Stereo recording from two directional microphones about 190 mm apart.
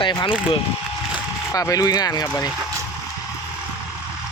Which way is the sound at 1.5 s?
15° left (ahead or behind).